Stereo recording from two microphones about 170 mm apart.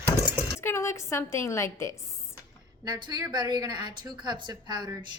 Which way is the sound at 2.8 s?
25° right (ahead or behind).